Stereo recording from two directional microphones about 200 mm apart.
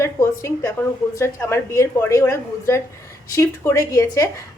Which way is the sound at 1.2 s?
15° left (ahead or behind).